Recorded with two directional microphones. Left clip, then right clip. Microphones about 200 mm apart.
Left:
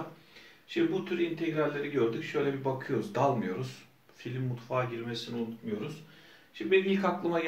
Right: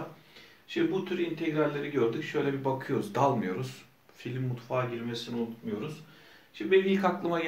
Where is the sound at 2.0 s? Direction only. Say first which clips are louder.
Right 1 dB; 25° right (ahead or behind).